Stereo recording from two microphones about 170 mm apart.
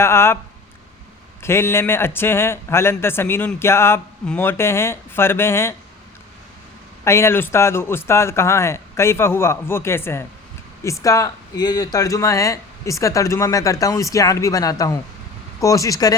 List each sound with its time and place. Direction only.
0.0 s a man's voice: 15° left (ahead or behind)
1.4 s a man's voice: 15° left (ahead or behind)
7.0 s a man's voice: 15° left (ahead or behind)